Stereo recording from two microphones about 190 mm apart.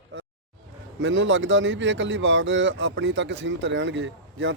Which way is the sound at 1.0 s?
80° right.